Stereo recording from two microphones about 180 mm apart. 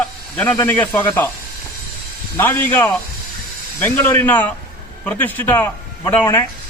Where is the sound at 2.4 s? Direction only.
10° left (ahead or behind).